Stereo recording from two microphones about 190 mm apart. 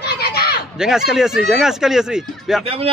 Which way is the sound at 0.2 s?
55° left (ahead or behind).